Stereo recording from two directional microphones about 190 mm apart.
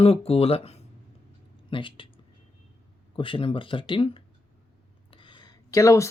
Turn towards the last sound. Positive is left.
turn(degrees=15)  # may be behind; listen again after turning